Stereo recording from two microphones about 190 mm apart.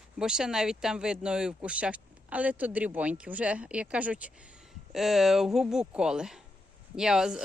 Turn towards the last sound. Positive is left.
turn(degrees=-5)  # may be behind; listen again after turning